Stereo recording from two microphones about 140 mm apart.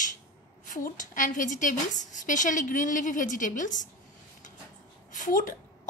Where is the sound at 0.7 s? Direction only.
70° left (ahead or behind).